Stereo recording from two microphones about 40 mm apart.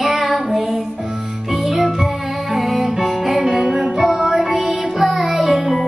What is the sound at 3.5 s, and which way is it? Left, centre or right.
Music, right.